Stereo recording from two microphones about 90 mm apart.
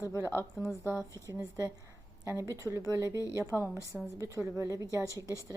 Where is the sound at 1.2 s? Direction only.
35° right (ahead or behind).